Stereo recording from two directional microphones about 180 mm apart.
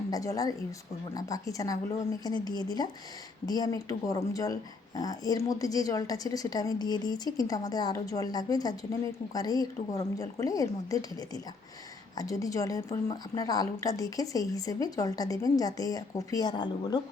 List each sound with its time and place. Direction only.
0.1 s speech: 20° left (ahead or behind)